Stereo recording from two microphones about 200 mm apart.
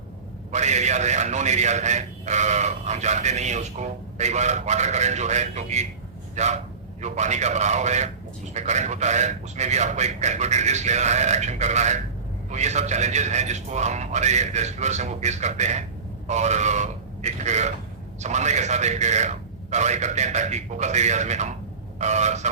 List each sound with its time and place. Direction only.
0.5 s speech: 35° right (ahead or behind)